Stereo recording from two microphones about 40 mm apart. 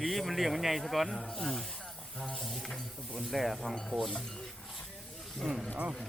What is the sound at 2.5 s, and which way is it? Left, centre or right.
Speech, centre.